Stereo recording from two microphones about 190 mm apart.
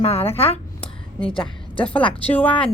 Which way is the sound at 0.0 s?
30° left (ahead or behind).